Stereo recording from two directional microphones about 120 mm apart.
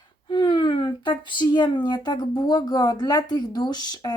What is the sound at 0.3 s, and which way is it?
Speech, 40° left (ahead or behind).